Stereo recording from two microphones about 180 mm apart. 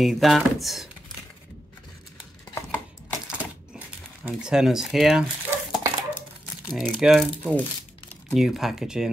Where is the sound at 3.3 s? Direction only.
5° right (ahead or behind).